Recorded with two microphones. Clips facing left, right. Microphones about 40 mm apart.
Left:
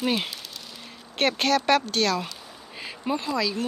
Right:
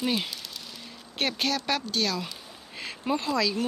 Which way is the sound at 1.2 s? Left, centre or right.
Left.